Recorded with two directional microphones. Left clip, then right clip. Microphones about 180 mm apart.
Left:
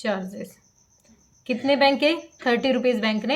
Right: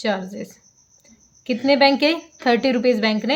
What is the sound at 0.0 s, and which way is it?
A woman's voice, 30° right (ahead or behind).